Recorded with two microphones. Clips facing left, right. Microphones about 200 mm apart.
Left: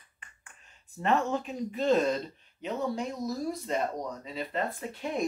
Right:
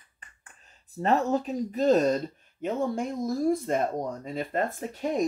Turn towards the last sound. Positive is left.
turn(degrees=-40)  # may be behind; listen again after turning